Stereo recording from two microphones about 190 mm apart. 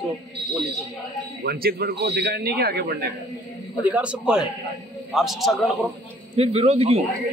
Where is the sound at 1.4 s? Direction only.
55° right (ahead or behind).